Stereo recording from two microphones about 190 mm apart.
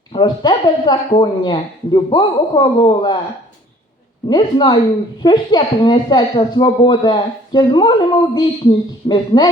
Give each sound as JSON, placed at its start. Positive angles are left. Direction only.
{"t": 0.1, "sound": "speech", "side_deg": 25}
{"t": 4.3, "sound": "speech", "side_deg": 25}